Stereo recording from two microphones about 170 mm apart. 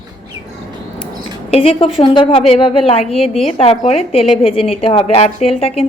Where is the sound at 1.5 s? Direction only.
35° left (ahead or behind).